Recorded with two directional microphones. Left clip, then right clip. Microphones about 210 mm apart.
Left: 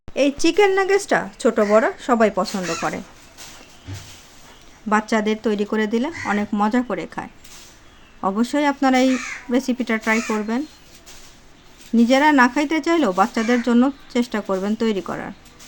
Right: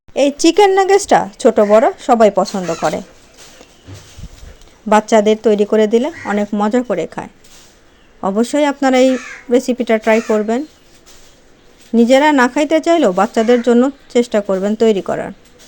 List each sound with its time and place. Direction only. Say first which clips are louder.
0.1 s speech: right 6 dB; 20° right (ahead or behind)
4.9 s speech: right 9 dB; 25° right (ahead or behind)
11.9 s speech: right 5 dB; 20° right (ahead or behind)